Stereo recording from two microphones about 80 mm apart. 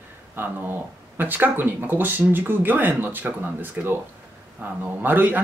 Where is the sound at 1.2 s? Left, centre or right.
Right.